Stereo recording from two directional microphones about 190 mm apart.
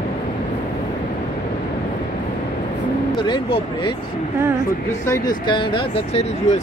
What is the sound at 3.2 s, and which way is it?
Speech, 25° left (ahead or behind).